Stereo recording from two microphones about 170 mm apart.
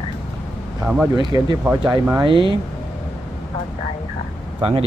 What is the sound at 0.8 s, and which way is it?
Speech, 5° right (ahead or behind).